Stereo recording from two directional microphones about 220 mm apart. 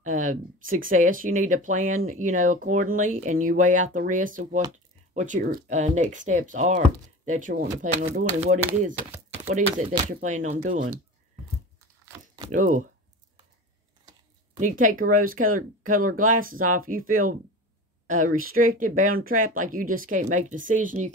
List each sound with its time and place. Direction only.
0.0 s speech: 35° right (ahead or behind)
9.5 s speech: 35° right (ahead or behind)
12.4 s speech: 35° right (ahead or behind)
14.6 s speech: 35° right (ahead or behind)